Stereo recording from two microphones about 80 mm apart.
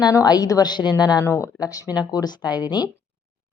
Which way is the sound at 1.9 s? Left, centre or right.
Left.